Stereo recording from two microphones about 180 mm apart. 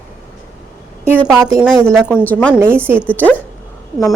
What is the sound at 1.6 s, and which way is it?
Speech, centre (ahead or behind).